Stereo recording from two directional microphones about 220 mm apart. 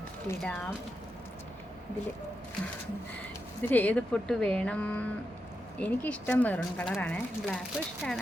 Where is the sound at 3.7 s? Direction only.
5° left (ahead or behind).